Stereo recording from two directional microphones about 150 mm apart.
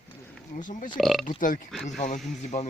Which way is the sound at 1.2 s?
60° left (ahead or behind).